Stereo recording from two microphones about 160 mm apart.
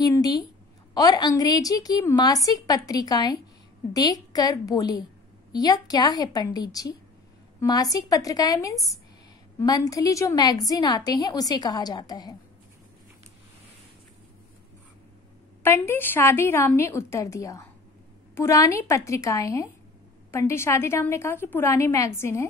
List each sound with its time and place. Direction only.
0.0 s a woman's voice: 25° left (ahead or behind)
15.6 s a woman's voice: 15° left (ahead or behind)